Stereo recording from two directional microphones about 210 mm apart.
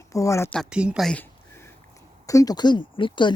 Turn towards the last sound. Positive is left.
turn(degrees=20)  # may be behind; listen again after turning